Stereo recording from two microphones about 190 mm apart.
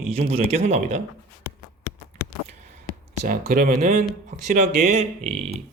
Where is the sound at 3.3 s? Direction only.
45° right (ahead or behind).